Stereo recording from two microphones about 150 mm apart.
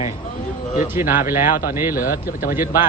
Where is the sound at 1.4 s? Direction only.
70° left (ahead or behind).